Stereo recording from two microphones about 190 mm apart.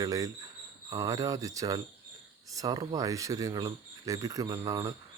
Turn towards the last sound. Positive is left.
turn(degrees=-20)  # may be behind; listen again after turning